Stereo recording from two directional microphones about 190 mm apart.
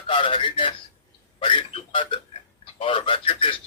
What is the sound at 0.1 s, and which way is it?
Speech, 25° left (ahead or behind).